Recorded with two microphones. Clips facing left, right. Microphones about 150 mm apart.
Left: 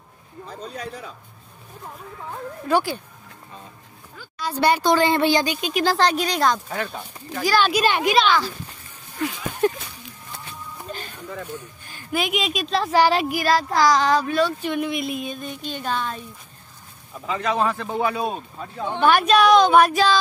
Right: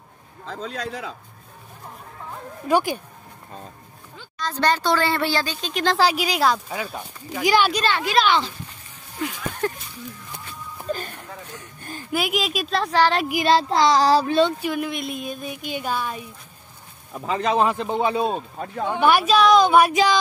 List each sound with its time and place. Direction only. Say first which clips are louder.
0.5 s a man's voice: right 3 dB; 90° right
2.7 s speech: right 1 dB; 15° right (ahead or behind)
4.4 s speech: left 2 dB; 10° left (ahead or behind)
5.9 s speech: even; 5° right (ahead or behind)
7.4 s speech: right 1 dB; 20° right (ahead or behind)
7.7 s speech: left 3 dB; 15° left (ahead or behind)
9.6 s a sound: left 6 dB; 20° left (ahead or behind)
12.1 s speech: even; 5° right (ahead or behind)
12.9 s speech: left 2 dB; 10° left (ahead or behind)
13.3 s speech: right 2 dB; 25° right (ahead or behind)
14.6 s speech: left 1 dB; centre (ahead or behind)
17.3 s speech: right 2 dB; 30° right (ahead or behind)
18.6 s speech: right 2 dB; 55° right (ahead or behind)
18.9 s speech: left 1 dB; 10° right (ahead or behind)